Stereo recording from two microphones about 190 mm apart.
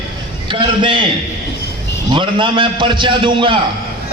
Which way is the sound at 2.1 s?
25° right (ahead or behind).